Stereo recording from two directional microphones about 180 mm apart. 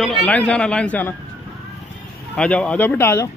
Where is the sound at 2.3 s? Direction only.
5° left (ahead or behind).